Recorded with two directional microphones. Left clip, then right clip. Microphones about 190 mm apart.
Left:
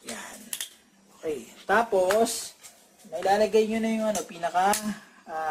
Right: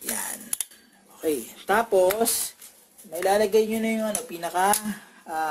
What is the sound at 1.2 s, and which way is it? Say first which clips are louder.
Speech: right 5 dB; 50° right (ahead or behind).